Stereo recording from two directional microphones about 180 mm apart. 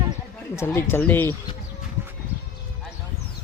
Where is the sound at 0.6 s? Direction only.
15° left (ahead or behind).